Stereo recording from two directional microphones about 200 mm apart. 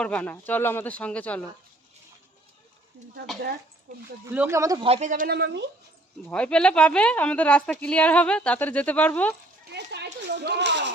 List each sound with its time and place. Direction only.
0.0 s a woman's voice: 5° left (ahead or behind)
4.3 s speech: 10° right (ahead or behind)
4.9 s a man's voice: 35° right (ahead or behind)
5.3 s speech: 55° right (ahead or behind)
6.3 s a woman's voice: 5° left (ahead or behind)
9.7 s a sound: 60° right (ahead or behind)